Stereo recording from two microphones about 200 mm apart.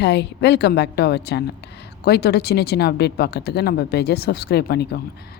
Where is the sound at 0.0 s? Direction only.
60° left (ahead or behind).